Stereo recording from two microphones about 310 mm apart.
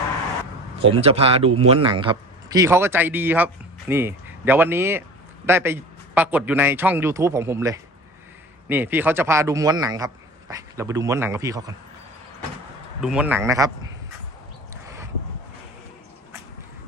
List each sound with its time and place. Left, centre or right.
0.9 s a man's voice: centre
13.0 s a man's voice: centre